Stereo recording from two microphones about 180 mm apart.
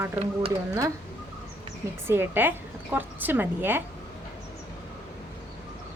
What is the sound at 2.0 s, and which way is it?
A woman's voice, 15° right (ahead or behind).